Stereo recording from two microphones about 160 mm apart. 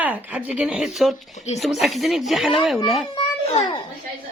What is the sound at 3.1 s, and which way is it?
Music, 30° left (ahead or behind).